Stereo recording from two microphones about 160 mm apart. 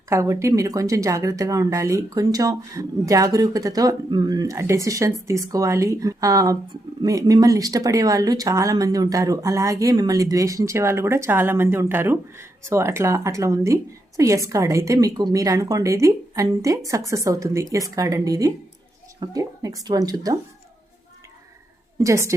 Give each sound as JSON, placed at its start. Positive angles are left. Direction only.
{"t": 0.1, "sound": "speech", "side_deg": -20}
{"t": 21.9, "sound": "speech", "side_deg": -20}